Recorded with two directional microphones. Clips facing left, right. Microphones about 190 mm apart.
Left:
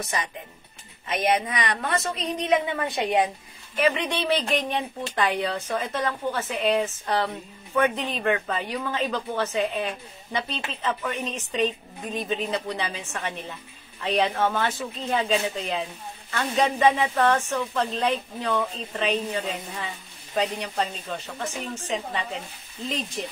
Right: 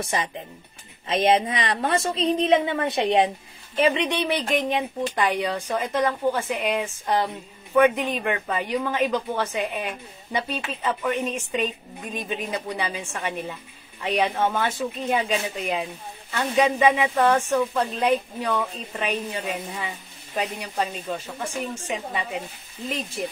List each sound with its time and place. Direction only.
0.0 s a woman's voice: 25° right (ahead or behind); by 23.3 s 5° right (ahead or behind)